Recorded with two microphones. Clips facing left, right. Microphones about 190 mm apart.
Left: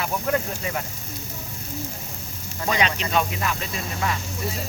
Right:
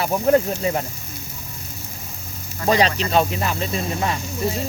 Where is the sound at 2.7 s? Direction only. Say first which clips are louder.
Right 6 dB; 35° right (ahead or behind).